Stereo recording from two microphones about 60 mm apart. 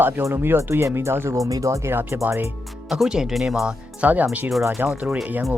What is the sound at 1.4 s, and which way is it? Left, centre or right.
Speech, right.